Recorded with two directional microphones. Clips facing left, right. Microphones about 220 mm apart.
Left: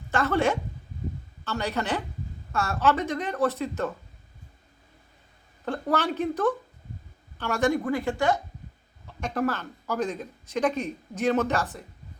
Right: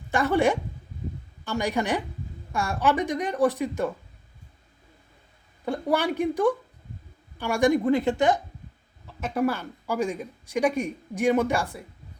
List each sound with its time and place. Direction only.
0.1 s speech: 15° right (ahead or behind)
5.6 s a woman's voice: 10° right (ahead or behind)
9.0 s speech: 5° right (ahead or behind)